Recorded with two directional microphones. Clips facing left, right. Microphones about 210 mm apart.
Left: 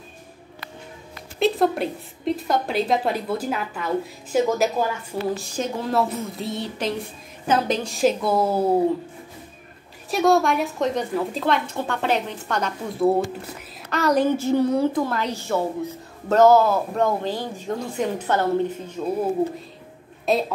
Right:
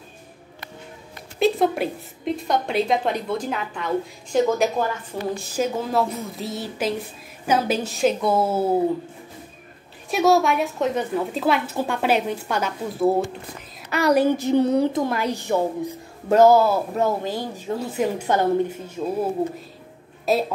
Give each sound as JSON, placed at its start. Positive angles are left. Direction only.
{"t": 1.4, "sound": "a woman's voice", "side_deg": 0}
{"t": 10.1, "sound": "a woman's voice", "side_deg": 0}
{"t": 13.8, "sound": "a woman's voice", "side_deg": -10}
{"t": 20.3, "sound": "a woman's voice", "side_deg": 0}